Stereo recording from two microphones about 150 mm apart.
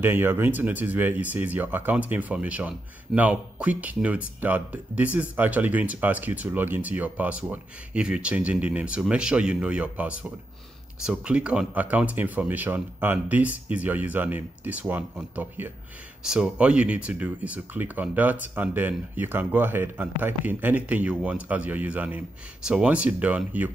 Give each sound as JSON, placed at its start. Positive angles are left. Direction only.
{"t": 0.0, "sound": "speech", "side_deg": -15}